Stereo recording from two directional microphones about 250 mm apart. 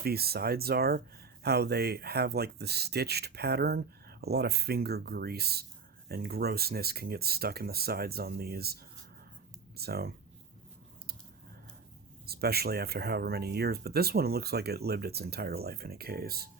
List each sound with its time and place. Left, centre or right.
0.0 s speech: right
12.2 s speech: right